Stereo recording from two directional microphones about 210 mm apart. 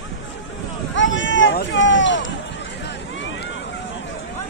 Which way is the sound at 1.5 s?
60° left (ahead or behind).